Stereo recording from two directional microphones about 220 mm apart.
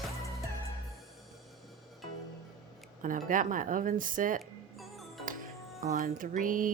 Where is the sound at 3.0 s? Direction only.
35° right (ahead or behind).